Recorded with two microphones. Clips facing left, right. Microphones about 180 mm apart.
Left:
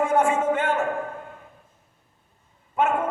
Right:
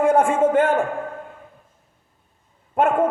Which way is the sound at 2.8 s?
50° right (ahead or behind).